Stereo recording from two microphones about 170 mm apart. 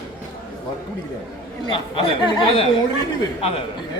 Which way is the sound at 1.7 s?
30° left (ahead or behind).